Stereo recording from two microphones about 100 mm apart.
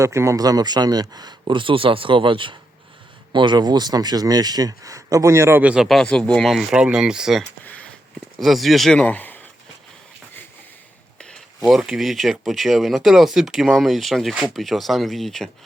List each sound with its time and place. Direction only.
0.0 s speech: 30° right (ahead or behind)
5.6 s speech: 10° right (ahead or behind)
5.9 s speech: 5° left (ahead or behind)
6.5 s speech: 5° right (ahead or behind)
7.6 s a sound: 15° left (ahead or behind)
8.4 s speech: centre (ahead or behind)
9.0 s speech: 15° left (ahead or behind)
11.2 s a sound: 10° left (ahead or behind)
11.7 s speech: 5° right (ahead or behind)